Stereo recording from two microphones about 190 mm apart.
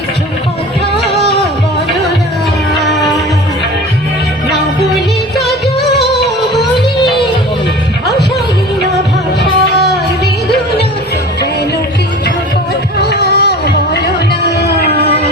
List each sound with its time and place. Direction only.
5.5 s music: centre (ahead or behind)
13.0 s music: 60° left (ahead or behind)
14.4 s a sound: 60° left (ahead or behind)